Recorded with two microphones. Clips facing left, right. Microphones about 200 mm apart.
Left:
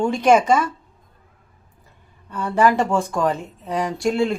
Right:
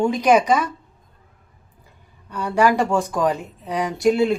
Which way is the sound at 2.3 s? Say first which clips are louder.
Even; centre (ahead or behind).